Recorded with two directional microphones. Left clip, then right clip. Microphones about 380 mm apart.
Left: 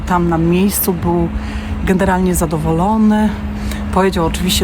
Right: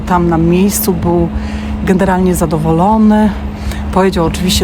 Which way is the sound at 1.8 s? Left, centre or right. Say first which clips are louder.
Right 3 dB; centre.